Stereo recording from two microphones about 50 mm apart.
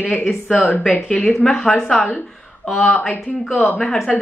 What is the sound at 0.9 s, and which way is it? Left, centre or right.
Speech, centre.